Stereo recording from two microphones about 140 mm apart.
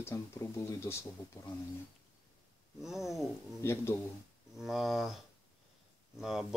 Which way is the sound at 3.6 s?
15° left (ahead or behind).